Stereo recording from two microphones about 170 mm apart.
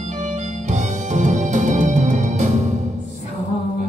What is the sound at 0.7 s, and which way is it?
Music, 45° right (ahead or behind).